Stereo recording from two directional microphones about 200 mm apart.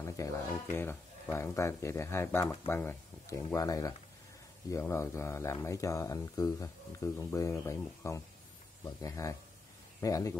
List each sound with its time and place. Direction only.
0.0 s speech: 15° left (ahead or behind)